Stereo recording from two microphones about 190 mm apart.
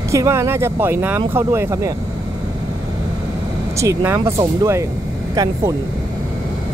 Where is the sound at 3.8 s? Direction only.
15° right (ahead or behind).